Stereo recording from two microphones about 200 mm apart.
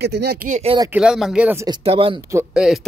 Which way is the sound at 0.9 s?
5° right (ahead or behind).